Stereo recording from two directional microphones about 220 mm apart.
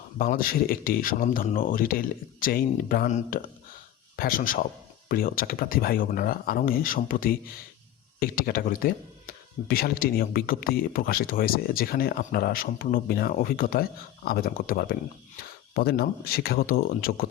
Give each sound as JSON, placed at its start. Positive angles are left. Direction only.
{"t": 0.2, "sound": "speech", "side_deg": 40}